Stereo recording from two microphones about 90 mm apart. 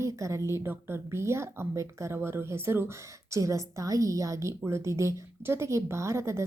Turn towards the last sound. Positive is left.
turn(degrees=-30)  # may be behind; listen again after turning